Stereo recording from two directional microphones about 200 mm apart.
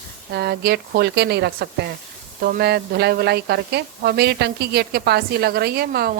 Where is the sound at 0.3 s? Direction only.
55° right (ahead or behind).